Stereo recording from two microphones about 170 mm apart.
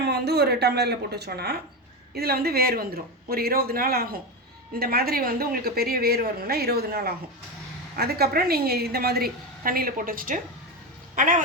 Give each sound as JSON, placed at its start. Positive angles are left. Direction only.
{"t": 0.0, "sound": "a woman's voice", "side_deg": -70}